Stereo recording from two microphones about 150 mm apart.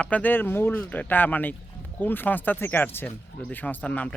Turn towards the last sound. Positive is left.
turn(degrees=10)  # may be behind; listen again after turning